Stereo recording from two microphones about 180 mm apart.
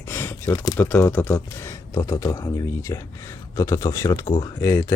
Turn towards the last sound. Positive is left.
turn(degrees=15)  # may be behind; listen again after turning